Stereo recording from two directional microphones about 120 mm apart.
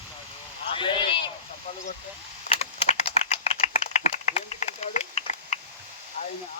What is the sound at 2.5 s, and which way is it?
Typing, 60° left (ahead or behind).